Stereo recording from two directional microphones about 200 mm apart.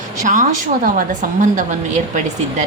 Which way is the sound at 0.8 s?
40° right (ahead or behind).